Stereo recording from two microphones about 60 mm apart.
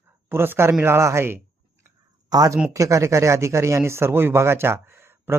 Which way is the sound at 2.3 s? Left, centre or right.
Right.